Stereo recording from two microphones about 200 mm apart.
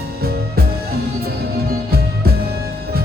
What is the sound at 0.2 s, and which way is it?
Music, 50° right (ahead or behind).